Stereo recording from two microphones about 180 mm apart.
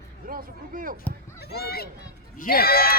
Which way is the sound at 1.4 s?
60° left (ahead or behind).